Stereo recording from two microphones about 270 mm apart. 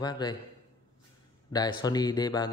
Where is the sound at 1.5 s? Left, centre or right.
Centre.